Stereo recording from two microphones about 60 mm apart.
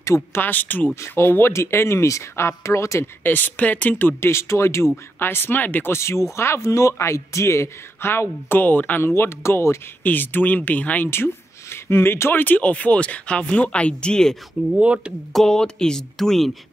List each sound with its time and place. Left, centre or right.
0.3 s speech: left
1.0 s speech: left
3.3 s speech: left
4.3 s speech: left
5.9 s speech: left
9.1 s speech: left
10.0 s speech: left
11.1 s speech: left; by 14.3 s centre
14.7 s speech: centre
15.3 s speech: centre